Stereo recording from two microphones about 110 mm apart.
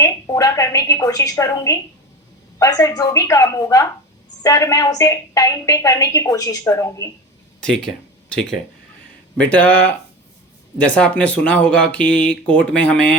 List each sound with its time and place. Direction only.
0.0 s a woman's voice: 30° left (ahead or behind)
7.6 s speech: 5° left (ahead or behind)